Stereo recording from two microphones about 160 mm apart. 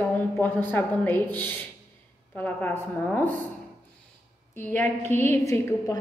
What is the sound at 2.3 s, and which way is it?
Speech, 10° left (ahead or behind).